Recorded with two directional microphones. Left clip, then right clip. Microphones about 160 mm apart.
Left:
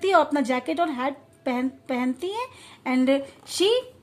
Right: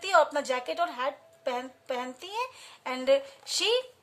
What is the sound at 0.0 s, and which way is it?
A woman's voice, 25° left (ahead or behind).